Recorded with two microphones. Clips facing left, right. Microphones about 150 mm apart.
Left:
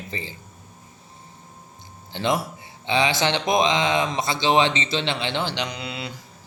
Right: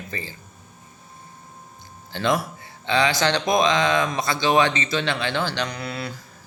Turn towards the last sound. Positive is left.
turn(degrees=15)  # may be behind; listen again after turning